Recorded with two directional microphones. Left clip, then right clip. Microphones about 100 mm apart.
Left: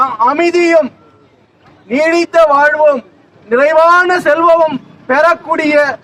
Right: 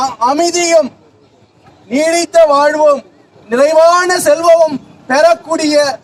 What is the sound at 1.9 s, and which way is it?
A man's voice, 20° left (ahead or behind).